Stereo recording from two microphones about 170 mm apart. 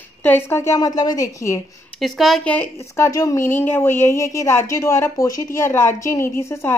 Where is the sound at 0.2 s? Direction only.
10° left (ahead or behind).